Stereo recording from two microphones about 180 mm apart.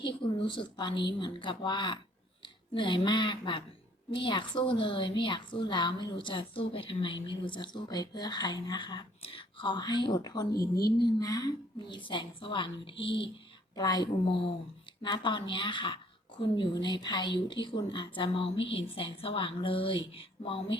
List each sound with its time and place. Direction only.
0.0 s a woman's voice: 30° left (ahead or behind)
10.5 s a woman's voice: 60° left (ahead or behind)
11.0 s a woman's voice: 20° left (ahead or behind)